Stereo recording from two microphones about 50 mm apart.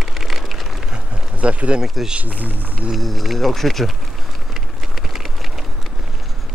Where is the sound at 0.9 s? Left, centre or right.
Right.